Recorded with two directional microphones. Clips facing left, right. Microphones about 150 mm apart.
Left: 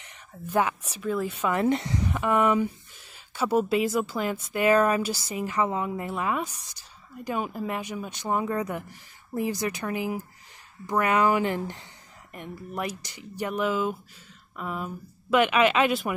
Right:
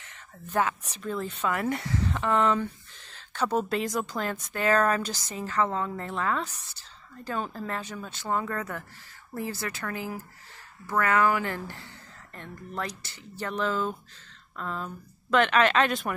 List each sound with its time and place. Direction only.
0.0 s speech: 15° left (ahead or behind)
1.5 s speech: 25° left (ahead or behind); by 16.1 s 5° left (ahead or behind)